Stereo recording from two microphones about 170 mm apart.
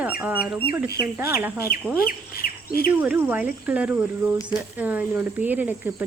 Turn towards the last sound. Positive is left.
turn(degrees=-10)  # may be behind; listen again after turning